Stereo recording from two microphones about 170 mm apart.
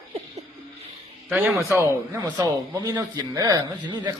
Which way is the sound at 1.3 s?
10° right (ahead or behind).